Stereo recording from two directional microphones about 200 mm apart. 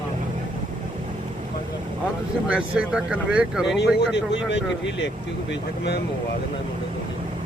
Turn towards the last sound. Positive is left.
turn(degrees=55)  # may be behind; listen again after turning